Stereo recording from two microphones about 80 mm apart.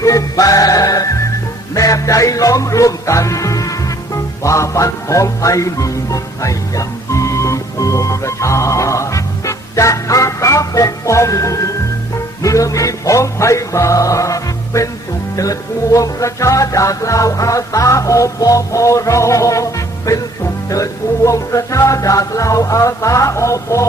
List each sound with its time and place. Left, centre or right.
0.0 s music: left